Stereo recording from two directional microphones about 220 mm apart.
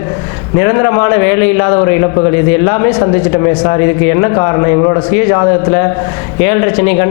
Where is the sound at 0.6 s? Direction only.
20° left (ahead or behind).